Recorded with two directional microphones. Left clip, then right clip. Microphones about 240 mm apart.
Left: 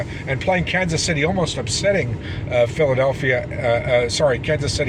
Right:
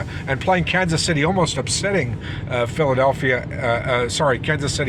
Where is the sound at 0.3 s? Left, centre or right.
Centre.